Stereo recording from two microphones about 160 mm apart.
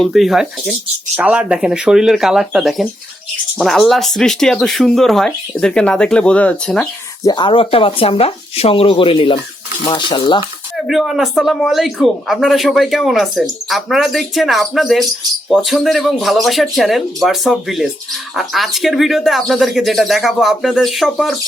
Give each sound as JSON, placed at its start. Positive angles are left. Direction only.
{"t": 0.0, "sound": "speech", "side_deg": 0}
{"t": 7.3, "sound": "speech", "side_deg": 30}
{"t": 10.8, "sound": "speech", "side_deg": 0}